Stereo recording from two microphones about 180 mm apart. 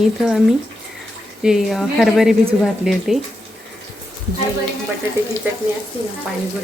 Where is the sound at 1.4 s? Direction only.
Centre (ahead or behind).